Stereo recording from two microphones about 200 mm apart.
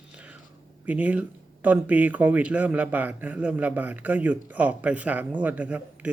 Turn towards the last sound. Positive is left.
turn(degrees=-10)  # may be behind; listen again after turning